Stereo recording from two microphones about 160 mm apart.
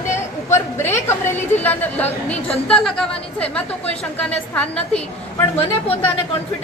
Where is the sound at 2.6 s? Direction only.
5° left (ahead or behind).